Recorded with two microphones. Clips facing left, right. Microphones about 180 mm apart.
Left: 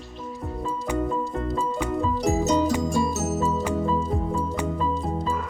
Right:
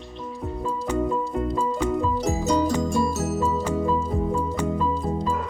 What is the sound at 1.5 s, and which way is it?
Music, centre (ahead or behind).